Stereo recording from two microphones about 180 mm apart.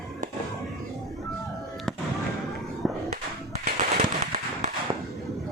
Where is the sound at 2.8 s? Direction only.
Centre (ahead or behind).